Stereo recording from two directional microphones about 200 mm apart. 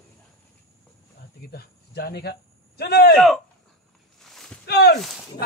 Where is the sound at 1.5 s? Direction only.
50° left (ahead or behind).